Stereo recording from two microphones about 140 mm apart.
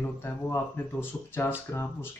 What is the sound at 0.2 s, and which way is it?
Speech, 15° left (ahead or behind).